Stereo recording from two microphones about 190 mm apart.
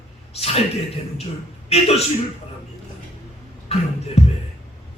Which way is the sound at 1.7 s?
30° left (ahead or behind).